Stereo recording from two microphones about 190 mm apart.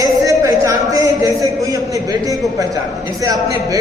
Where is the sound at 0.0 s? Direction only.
15° right (ahead or behind).